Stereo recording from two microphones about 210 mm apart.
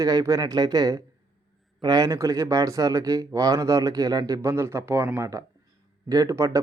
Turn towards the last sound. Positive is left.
turn(degrees=-15)  # may be behind; listen again after turning